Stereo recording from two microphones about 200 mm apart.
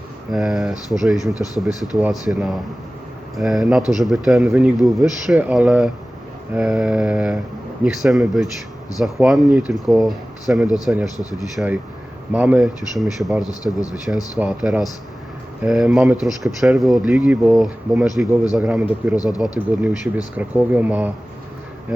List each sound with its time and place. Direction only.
0.3 s speech: centre (ahead or behind)
1.3 s speech: 15° left (ahead or behind)
2.0 s speech: 5° right (ahead or behind)
11.2 s speech: 20° left (ahead or behind)
11.5 s speech: 5° right (ahead or behind)
13.5 s speech: 20° left (ahead or behind)
14.3 s speech: 5° right (ahead or behind)
19.1 s speech: 20° left (ahead or behind)
19.4 s speech: 5° right (ahead or behind)